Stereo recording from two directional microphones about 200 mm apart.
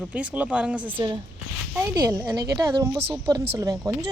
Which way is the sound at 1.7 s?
20° right (ahead or behind).